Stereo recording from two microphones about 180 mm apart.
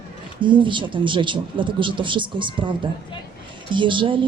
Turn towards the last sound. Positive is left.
turn(degrees=-25)  # may be behind; listen again after turning